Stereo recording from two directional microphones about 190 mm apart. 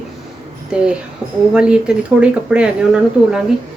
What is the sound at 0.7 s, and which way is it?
Speech, 5° right (ahead or behind).